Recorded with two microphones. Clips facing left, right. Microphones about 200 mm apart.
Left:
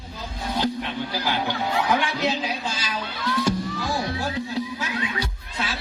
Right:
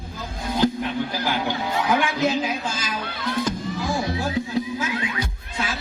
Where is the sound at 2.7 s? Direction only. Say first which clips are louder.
Right 1 dB; 50° right (ahead or behind).